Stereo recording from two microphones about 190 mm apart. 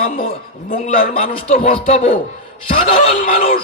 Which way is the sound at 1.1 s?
35° left (ahead or behind).